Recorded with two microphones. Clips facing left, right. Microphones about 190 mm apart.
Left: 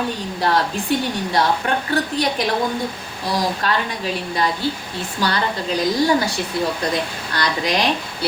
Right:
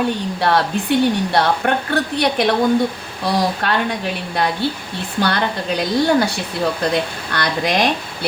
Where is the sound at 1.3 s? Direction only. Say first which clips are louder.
Right 2 dB; 60° right (ahead or behind).